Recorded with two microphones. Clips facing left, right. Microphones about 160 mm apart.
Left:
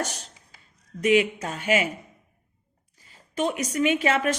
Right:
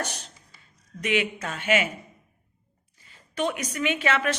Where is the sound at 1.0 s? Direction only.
40° left (ahead or behind).